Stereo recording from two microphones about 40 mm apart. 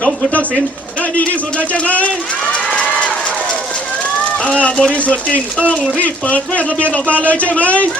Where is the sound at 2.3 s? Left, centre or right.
Left.